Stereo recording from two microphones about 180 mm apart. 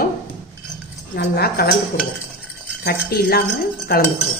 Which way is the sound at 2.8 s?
60° left (ahead or behind).